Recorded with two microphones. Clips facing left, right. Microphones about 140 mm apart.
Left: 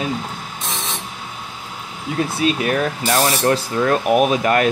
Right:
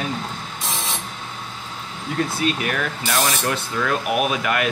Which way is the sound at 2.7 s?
35° left (ahead or behind).